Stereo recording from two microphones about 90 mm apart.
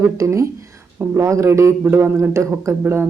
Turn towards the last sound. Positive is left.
turn(degrees=-25)  # may be behind; listen again after turning